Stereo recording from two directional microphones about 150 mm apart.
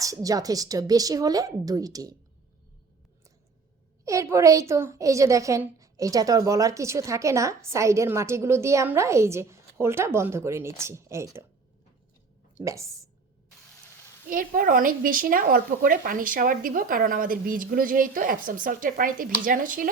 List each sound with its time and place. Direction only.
0.0 s a woman's voice: 25° right (ahead or behind)
4.0 s a woman's voice: 20° right (ahead or behind)
12.6 s a woman's voice: 20° right (ahead or behind)
14.3 s a woman's voice: 65° right (ahead or behind)